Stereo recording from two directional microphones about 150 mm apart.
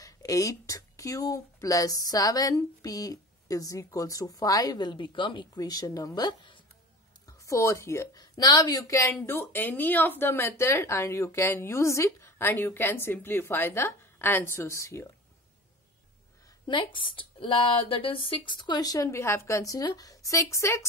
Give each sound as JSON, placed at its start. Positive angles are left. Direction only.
{"t": 0.0, "sound": "a woman's voice", "side_deg": 20}
{"t": 16.6, "sound": "speech", "side_deg": 30}